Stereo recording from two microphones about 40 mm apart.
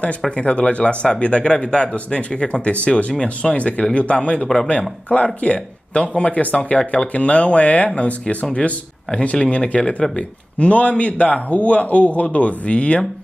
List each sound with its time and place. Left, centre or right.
0.4 s speech: left